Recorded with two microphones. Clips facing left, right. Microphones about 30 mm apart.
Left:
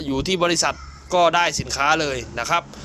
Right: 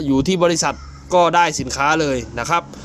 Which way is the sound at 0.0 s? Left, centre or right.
Left.